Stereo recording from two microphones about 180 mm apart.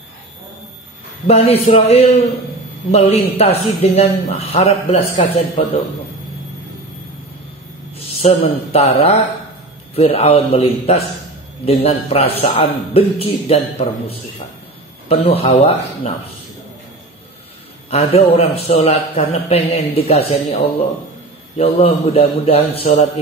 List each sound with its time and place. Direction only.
1.2 s a man's voice: 35° left (ahead or behind)
8.2 s a man's voice: 35° left (ahead or behind)
17.8 s a man's voice: 35° left (ahead or behind)